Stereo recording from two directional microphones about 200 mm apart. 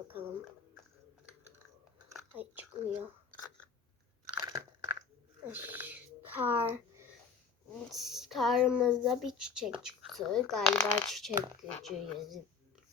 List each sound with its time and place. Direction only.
2.1 s squish: 10° right (ahead or behind)
4.4 s crunch: 20° right (ahead or behind)
5.5 s a sound: 10° right (ahead or behind)
7.9 s speech: centre (ahead or behind)